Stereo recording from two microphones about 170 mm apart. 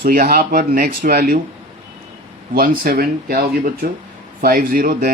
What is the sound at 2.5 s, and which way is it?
Speech, 60° right (ahead or behind).